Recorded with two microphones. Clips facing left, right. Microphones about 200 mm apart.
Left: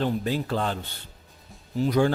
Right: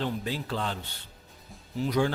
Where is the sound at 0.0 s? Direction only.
50° left (ahead or behind).